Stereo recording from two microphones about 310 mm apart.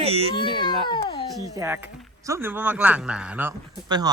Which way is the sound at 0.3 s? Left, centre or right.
Centre.